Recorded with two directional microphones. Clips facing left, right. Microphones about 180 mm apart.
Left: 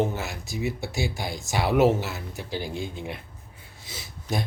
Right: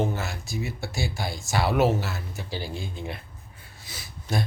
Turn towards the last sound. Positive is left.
turn(degrees=20)  # may be behind; listen again after turning